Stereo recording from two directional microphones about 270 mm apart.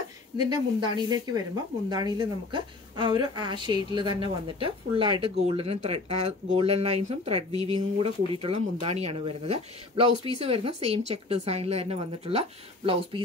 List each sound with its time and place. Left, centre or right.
0.4 s a woman's voice: centre